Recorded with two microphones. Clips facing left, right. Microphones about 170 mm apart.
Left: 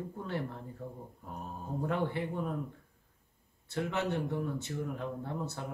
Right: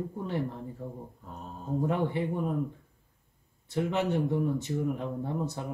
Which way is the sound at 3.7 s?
15° right (ahead or behind).